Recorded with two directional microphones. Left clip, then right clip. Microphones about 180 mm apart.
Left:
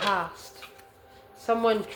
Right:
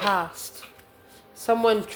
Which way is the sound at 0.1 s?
50° right (ahead or behind).